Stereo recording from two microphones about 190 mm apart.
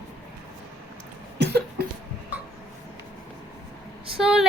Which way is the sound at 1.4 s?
60° right (ahead or behind).